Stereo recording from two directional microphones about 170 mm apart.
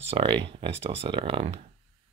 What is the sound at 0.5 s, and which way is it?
Speech, 35° right (ahead or behind).